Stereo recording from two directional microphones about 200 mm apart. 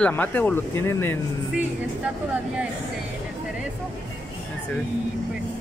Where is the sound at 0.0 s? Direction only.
10° left (ahead or behind).